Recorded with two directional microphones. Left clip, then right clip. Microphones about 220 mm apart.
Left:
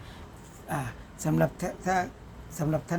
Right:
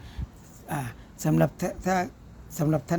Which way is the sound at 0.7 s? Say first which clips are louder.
Even; 30° right (ahead or behind).